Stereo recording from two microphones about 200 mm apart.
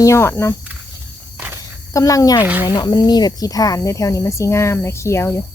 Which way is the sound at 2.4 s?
10° right (ahead or behind).